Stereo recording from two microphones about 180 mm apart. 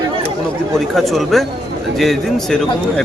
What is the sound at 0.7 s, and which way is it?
Speech, centre (ahead or behind).